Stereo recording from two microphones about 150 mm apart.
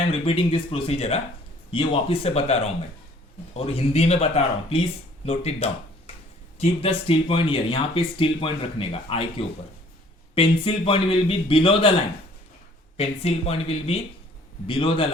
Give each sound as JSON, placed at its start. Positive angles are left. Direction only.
{"t": 0.0, "sound": "speech", "side_deg": 40}
{"t": 13.0, "sound": "speech", "side_deg": 40}